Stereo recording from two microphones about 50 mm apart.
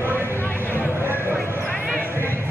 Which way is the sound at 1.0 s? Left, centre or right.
Right.